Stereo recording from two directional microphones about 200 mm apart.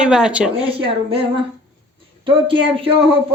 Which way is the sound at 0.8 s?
30° right (ahead or behind).